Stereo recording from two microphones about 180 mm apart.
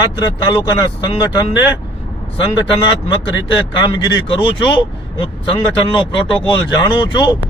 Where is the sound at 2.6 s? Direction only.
25° left (ahead or behind).